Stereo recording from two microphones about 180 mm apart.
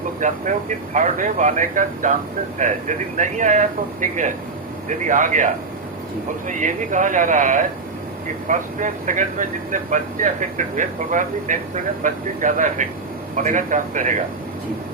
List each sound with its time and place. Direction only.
0.2 s speech: 45° right (ahead or behind)
4.9 s speech: 45° right (ahead or behind)
6.5 s speech: 45° right (ahead or behind)